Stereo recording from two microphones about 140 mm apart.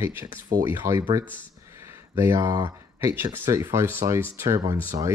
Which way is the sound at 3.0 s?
20° right (ahead or behind).